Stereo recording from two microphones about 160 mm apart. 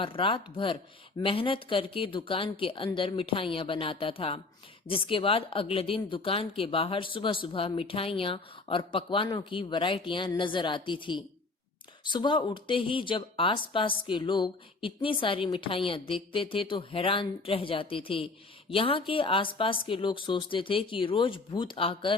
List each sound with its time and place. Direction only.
0.0 s a woman's voice: 30° left (ahead or behind)